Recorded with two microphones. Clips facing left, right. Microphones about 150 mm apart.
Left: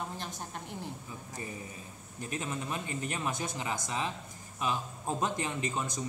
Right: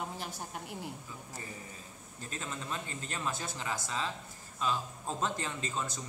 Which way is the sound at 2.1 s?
15° left (ahead or behind).